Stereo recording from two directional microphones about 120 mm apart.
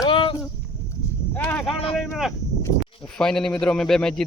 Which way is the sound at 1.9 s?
Centre (ahead or behind).